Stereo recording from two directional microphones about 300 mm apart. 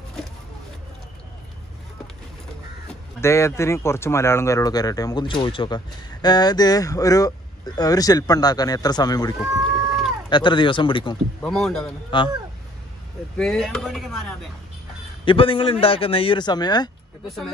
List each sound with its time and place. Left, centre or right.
3.2 s speech: centre
9.4 s a sound: centre
10.3 s speech: centre
11.4 s speech: centre
12.1 s speech: centre
13.4 s speech: centre
15.2 s speech: centre